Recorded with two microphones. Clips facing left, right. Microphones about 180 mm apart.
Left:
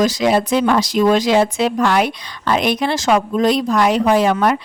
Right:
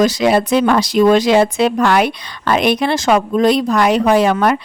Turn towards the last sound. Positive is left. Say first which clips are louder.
# right 2 dB
turn(degrees=-65)  # may be behind; listen again after turning